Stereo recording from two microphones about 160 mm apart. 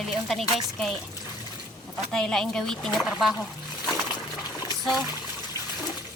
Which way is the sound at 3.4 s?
20° left (ahead or behind).